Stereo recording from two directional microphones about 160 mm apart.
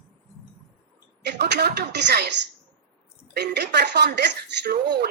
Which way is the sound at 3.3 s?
90° right.